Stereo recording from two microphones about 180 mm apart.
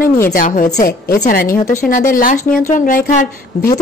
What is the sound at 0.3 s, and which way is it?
A woman's voice, 50° left (ahead or behind).